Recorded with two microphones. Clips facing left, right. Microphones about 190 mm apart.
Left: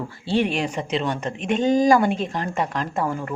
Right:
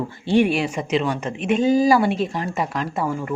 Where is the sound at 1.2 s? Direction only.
35° left (ahead or behind).